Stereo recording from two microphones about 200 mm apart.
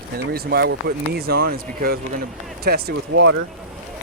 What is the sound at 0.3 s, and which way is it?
Speech, 50° right (ahead or behind).